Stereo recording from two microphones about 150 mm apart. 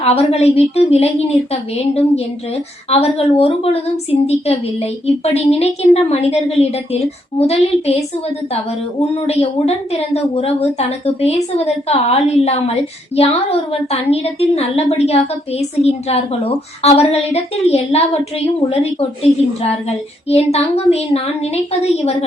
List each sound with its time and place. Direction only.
0.0 s a woman's voice: 45° left (ahead or behind)
2.9 s a woman's voice: 40° left (ahead or behind)
9.0 s a woman's voice: 40° left (ahead or behind)